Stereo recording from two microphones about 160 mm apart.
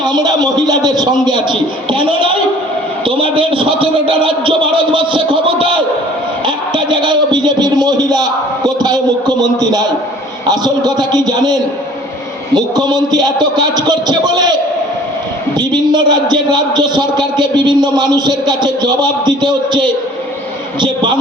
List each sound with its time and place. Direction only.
0.0 s a man's voice: 25° right (ahead or behind)
6.4 s a sound: 30° right (ahead or behind)
10.5 s a man's voice: 25° right (ahead or behind)
15.5 s a man's voice: 30° right (ahead or behind)